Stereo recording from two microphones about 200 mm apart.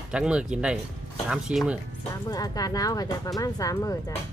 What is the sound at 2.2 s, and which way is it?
Speech, 20° left (ahead or behind).